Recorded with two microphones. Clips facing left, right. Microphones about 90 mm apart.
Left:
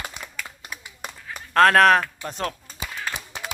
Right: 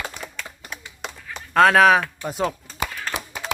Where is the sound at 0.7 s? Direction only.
10° left (ahead or behind).